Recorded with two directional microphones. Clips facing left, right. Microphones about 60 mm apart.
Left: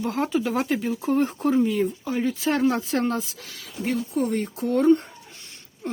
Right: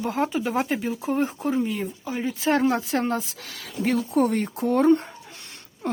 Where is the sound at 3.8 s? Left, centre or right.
Right.